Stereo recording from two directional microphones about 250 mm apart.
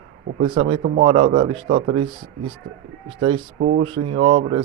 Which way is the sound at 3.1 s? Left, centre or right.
Centre.